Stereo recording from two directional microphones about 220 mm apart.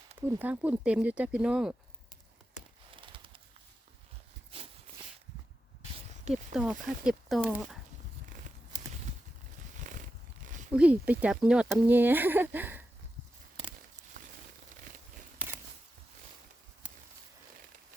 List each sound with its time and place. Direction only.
0.2 s speech: 10° right (ahead or behind)
2.9 s horse: 25° right (ahead or behind)
6.3 s speech: 5° right (ahead or behind)
10.8 s speech: 5° right (ahead or behind)
14.2 s crumpling: 35° right (ahead or behind)